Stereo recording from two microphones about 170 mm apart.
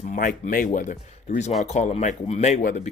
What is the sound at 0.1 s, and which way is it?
Speech, 50° left (ahead or behind).